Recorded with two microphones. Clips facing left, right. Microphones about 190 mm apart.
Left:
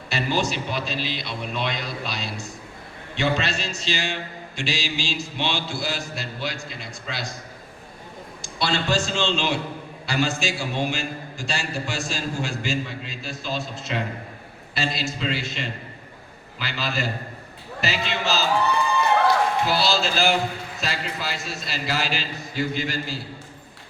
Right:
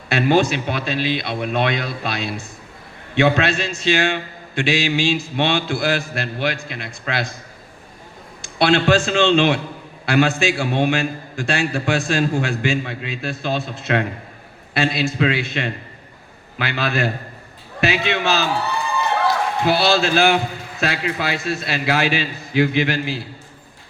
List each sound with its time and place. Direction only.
0.1 s a man's voice: 60° right (ahead or behind)
8.4 s a man's voice: 60° right (ahead or behind)
19.6 s a man's voice: 60° right (ahead or behind)